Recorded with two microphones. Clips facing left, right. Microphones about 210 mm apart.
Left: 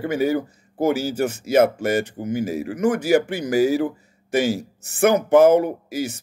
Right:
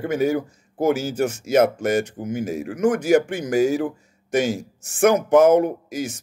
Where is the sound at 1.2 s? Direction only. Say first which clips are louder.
Even; 60° left (ahead or behind).